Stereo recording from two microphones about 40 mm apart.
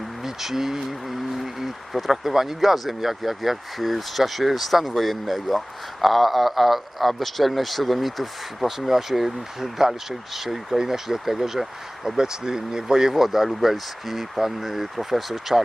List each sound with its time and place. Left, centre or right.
0.2 s speech: centre